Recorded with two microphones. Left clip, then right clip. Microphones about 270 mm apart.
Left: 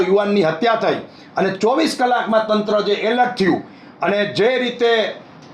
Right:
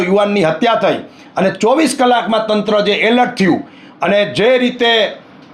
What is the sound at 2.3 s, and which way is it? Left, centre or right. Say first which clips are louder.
Speech: right 2 dB; centre.